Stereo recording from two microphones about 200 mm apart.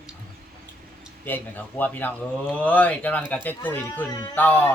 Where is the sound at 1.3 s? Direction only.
10° left (ahead or behind).